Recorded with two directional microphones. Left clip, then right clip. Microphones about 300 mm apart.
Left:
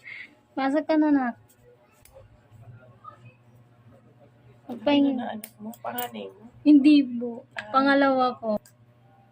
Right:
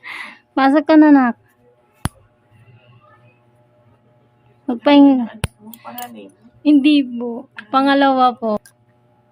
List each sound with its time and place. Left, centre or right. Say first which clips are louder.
0.0 s a sound: right 10 dB; right
4.8 s a woman's voice: right 12 dB; right
6.6 s a woman's voice: right 4 dB; right